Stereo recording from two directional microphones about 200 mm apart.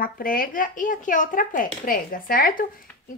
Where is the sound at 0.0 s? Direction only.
45° left (ahead or behind).